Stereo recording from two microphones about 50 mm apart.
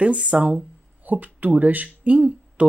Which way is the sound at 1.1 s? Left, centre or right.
Right.